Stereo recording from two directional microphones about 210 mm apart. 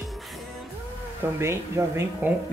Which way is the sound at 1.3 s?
10° right (ahead or behind).